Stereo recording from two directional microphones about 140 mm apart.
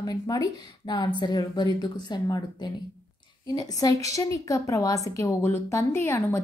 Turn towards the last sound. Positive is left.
turn(degrees=15)  # may be behind; listen again after turning